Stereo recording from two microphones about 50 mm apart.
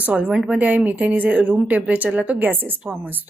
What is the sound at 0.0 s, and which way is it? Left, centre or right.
Speech, right.